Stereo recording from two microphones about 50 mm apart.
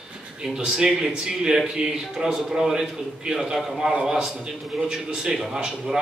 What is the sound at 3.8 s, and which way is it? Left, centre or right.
A man's voice, centre.